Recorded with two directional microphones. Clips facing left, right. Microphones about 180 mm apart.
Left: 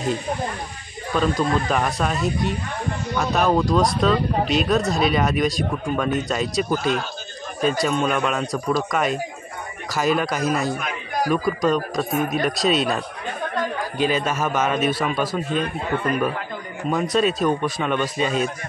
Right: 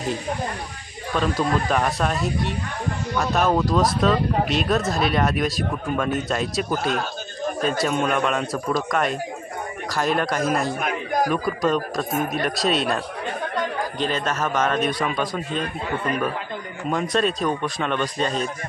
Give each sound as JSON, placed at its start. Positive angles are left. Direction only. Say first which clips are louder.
{"t": 1.1, "sound": "speech", "louder": "left 1 dB", "side_deg": 0}
{"t": 7.6, "sound": "speech", "louder": "left 3 dB", "side_deg": 0}
{"t": 10.8, "sound": "a sound", "louder": "right 3 dB", "side_deg": -50}
{"t": 11.2, "sound": "a man's voice", "louder": "left 6 dB", "side_deg": 0}